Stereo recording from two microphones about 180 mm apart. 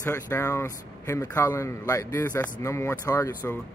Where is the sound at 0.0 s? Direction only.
15° left (ahead or behind).